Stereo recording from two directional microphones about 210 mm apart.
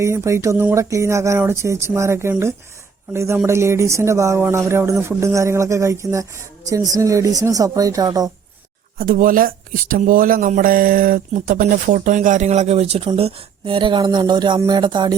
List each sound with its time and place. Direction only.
0.0 s speech: 15° right (ahead or behind)
9.0 s speech: 40° right (ahead or behind); by 15.1 s 20° right (ahead or behind)